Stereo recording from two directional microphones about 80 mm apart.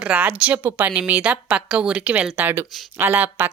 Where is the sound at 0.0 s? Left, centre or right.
Centre.